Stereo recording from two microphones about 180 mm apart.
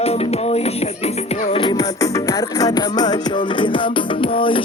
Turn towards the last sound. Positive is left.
turn(degrees=30)  # may be behind; listen again after turning